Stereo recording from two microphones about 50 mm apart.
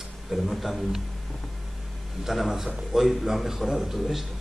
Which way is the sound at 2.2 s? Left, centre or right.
Centre.